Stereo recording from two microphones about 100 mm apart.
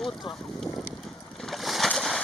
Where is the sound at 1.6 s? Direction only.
Centre (ahead or behind).